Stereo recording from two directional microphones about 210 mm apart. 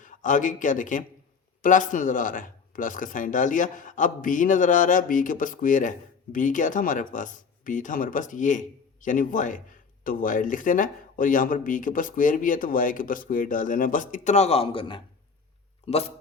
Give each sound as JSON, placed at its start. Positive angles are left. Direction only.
{"t": 0.0, "sound": "a man's voice", "side_deg": 40}